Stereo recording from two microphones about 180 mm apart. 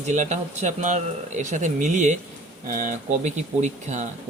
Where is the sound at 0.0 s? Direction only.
40° right (ahead or behind).